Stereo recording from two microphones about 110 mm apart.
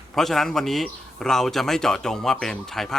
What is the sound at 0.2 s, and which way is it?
Speech, centre (ahead or behind).